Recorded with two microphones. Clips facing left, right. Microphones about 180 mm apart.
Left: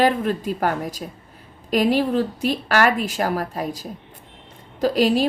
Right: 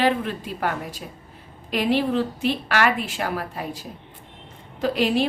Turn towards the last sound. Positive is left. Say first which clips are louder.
# left 3 dB
turn(degrees=40)  # may be behind; listen again after turning